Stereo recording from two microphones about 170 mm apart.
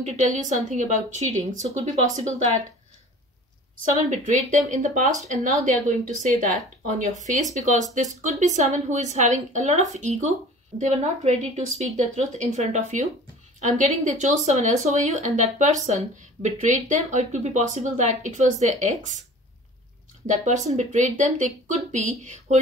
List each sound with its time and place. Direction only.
0.0 s speech: 45° right (ahead or behind)
3.9 s speech: 40° right (ahead or behind)
7.5 s speech: 45° right (ahead or behind)
20.2 s speech: 45° right (ahead or behind)